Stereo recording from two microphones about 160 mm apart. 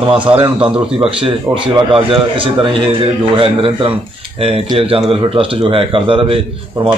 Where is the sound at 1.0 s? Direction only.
35° right (ahead or behind).